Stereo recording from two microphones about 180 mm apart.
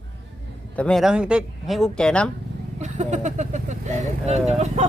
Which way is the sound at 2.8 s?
40° right (ahead or behind).